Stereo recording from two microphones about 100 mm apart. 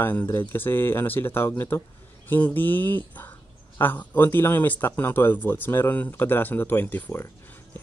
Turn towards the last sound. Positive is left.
turn(degrees=20)  # may be behind; listen again after turning